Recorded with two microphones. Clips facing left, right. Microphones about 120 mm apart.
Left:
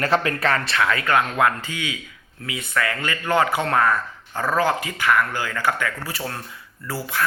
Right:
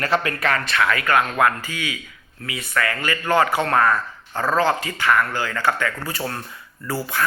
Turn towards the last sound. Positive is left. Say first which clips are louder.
# right 2 dB
turn(degrees=0)  # may be behind; listen again after turning